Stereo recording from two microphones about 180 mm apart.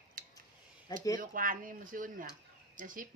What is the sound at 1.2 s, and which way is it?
Speech, 50° right (ahead or behind).